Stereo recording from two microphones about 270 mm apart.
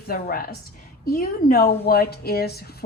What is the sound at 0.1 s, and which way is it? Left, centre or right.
A woman's voice, left.